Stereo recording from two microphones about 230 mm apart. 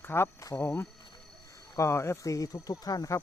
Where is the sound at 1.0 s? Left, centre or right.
Centre.